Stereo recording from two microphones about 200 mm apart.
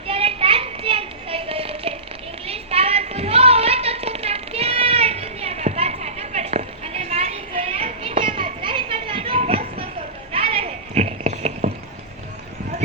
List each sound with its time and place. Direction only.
0.1 s child singing: 30° right (ahead or behind)
2.5 s music: 30° right (ahead or behind)
10.3 s goat: 30° right (ahead or behind)